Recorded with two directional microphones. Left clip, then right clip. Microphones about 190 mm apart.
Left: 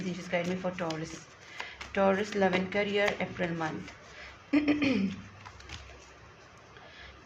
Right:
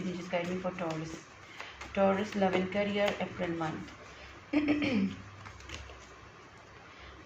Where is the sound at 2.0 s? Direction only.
45° left (ahead or behind).